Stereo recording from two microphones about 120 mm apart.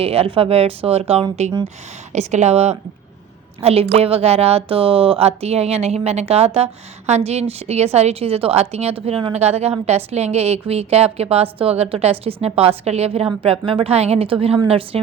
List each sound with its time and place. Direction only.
0.0 s a woman's voice: 55° right (ahead or behind)
2.1 s a woman's voice: 70° right (ahead or behind); by 15.0 s 55° right (ahead or behind)